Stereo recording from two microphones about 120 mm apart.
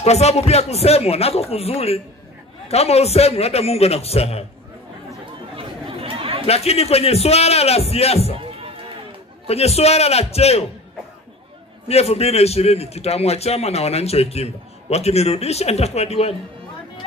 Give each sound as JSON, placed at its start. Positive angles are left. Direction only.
{"t": 0.0, "sound": "a man's voice", "side_deg": 60}
{"t": 5.6, "sound": "chatter", "side_deg": -50}
{"t": 6.4, "sound": "a man's voice", "side_deg": 60}
{"t": 8.4, "sound": "music", "side_deg": -50}
{"t": 9.5, "sound": "a man's voice", "side_deg": 60}
{"t": 11.9, "sound": "a man's voice", "side_deg": 60}